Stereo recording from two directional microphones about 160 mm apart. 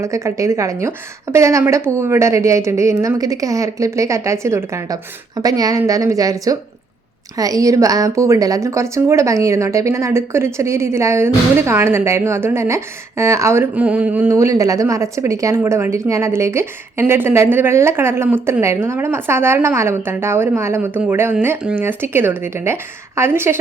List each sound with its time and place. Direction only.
0.0 s a woman's voice: 20° right (ahead or behind)